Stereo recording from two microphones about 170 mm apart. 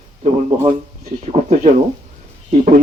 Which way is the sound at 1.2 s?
45° right (ahead or behind).